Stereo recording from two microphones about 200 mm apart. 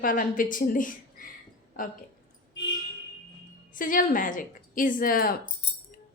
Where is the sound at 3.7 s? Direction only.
45° left (ahead or behind).